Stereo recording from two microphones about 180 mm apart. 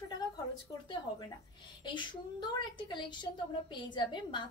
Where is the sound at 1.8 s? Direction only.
25° left (ahead or behind).